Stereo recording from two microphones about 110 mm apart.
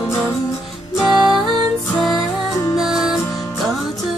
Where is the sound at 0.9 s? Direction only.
Centre (ahead or behind).